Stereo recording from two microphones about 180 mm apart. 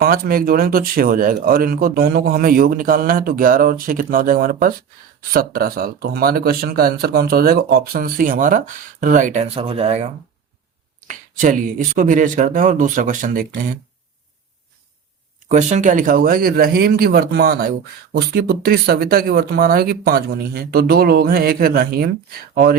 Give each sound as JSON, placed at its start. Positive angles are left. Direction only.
{"t": 0.0, "sound": "speech", "side_deg": -55}
{"t": 11.1, "sound": "speech", "side_deg": -45}
{"t": 15.4, "sound": "speech", "side_deg": -40}